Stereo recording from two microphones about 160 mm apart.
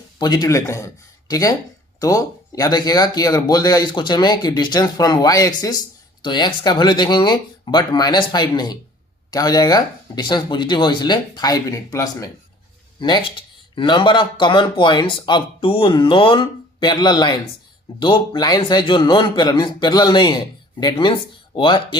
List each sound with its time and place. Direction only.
0.2 s speech: 25° left (ahead or behind)